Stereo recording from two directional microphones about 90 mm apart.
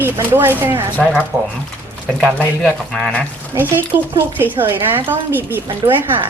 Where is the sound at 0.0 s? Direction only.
25° right (ahead or behind).